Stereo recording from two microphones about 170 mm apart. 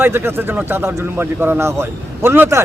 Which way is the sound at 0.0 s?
15° right (ahead or behind).